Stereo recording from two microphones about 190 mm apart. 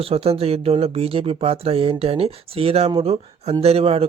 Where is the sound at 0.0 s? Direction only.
30° right (ahead or behind).